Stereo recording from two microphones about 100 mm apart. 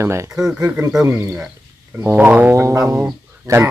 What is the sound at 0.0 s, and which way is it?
Speech, 25° right (ahead or behind).